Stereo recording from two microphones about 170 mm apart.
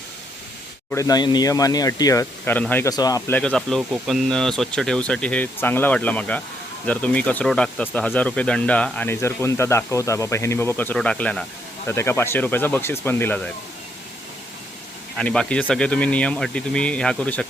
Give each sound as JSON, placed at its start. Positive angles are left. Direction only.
{"t": 0.9, "sound": "speech", "side_deg": 20}
{"t": 2.9, "sound": "speech", "side_deg": 20}
{"t": 15.1, "sound": "speech", "side_deg": 5}